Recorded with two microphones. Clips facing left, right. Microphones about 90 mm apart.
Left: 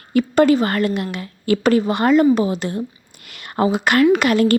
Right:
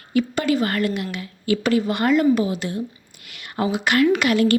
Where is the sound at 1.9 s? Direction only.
30° left (ahead or behind).